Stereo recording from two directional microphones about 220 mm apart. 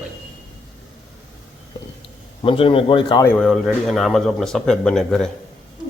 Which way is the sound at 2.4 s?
25° left (ahead or behind).